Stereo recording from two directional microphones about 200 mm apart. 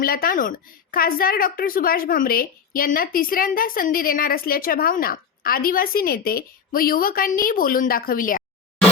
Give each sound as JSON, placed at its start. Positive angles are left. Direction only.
{"t": 0.0, "sound": "a woman's voice", "side_deg": 45}